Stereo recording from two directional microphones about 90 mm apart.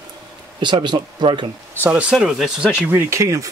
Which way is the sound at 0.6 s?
55° right (ahead or behind).